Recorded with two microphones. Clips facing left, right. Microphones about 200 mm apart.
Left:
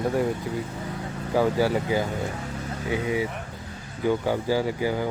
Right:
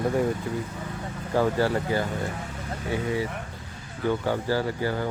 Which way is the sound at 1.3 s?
10° left (ahead or behind).